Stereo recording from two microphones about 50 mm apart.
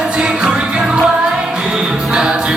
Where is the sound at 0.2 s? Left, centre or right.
Centre.